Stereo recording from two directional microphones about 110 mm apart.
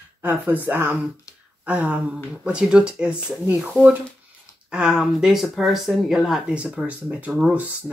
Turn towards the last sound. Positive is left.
turn(degrees=-10)  # may be behind; listen again after turning